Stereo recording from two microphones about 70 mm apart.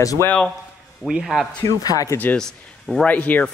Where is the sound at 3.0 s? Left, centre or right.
Left.